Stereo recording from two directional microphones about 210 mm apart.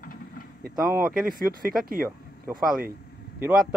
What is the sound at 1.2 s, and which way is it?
Speech, 45° right (ahead or behind).